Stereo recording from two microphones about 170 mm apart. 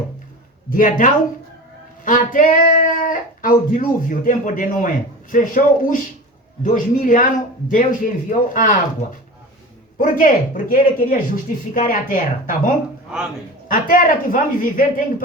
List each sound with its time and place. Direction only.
0.7 s speech: 50° left (ahead or behind)
10.0 s speech: 50° left (ahead or behind)